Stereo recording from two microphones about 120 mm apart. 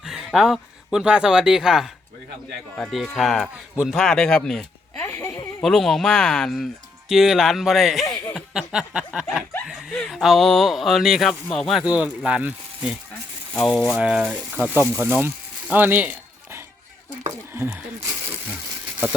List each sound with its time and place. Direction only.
0.0 s speech: 5° right (ahead or behind)
3.9 s speech: 5° left (ahead or behind)
4.9 s a sound: 20° left (ahead or behind)
5.6 s speech: centre (ahead or behind)
8.4 s a sound: 5° right (ahead or behind)
9.3 s speech: centre (ahead or behind)
13.7 s speech: centre (ahead or behind)
13.9 s speech: 10° right (ahead or behind)
14.8 s speech: 15° right (ahead or behind)
15.7 s a sound: 15° right (ahead or behind)
17.5 s speech: 20° right (ahead or behind)